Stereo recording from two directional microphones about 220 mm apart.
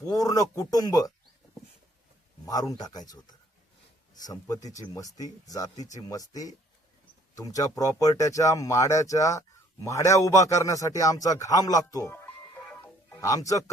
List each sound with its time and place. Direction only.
0.0 s speech: 15° left (ahead or behind)
2.5 s a man's voice: 15° left (ahead or behind)